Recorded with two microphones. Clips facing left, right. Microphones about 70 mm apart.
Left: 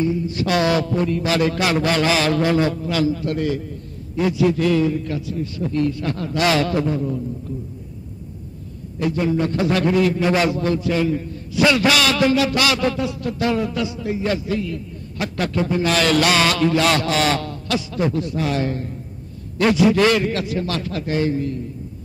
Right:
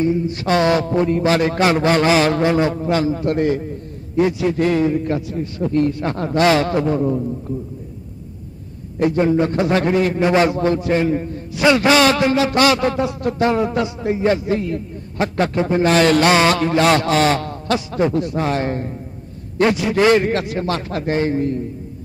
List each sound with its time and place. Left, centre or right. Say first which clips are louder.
0.0 s a man's voice: right 2 dB; right
9.0 s a man's voice: right 4 dB; right